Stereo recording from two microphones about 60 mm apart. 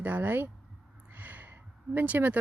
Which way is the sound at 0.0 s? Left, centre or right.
Right.